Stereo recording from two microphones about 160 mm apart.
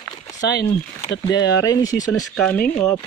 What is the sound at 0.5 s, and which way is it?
Speech, 90° left.